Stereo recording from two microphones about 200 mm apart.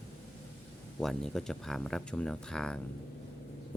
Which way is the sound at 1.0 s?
Centre (ahead or behind).